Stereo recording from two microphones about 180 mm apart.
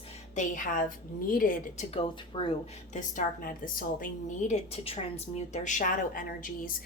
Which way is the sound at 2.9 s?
50° left (ahead or behind).